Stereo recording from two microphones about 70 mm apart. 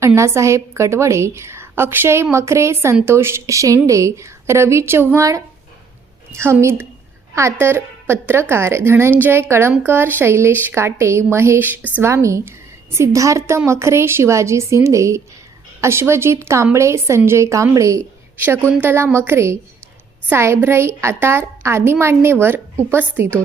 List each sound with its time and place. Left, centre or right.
0.0 s a woman's voice: right
6.3 s a woman's voice: right
12.0 s a woman's voice: right
18.3 s a woman's voice: right